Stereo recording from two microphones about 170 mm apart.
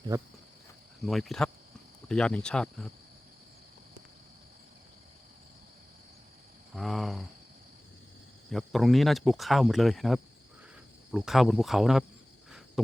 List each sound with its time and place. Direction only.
1.0 s speech: centre (ahead or behind)
6.7 s speech: centre (ahead or behind)
8.4 s speech: centre (ahead or behind)
12.5 s a sound: centre (ahead or behind)